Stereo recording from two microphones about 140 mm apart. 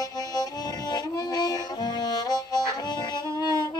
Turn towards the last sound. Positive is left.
turn(degrees=30)  # may be behind; listen again after turning